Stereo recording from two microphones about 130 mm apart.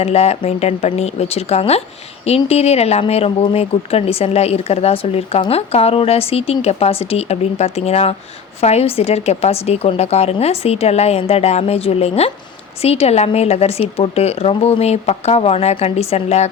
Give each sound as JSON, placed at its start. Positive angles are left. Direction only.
{"t": 0.0, "sound": "speech", "side_deg": 55}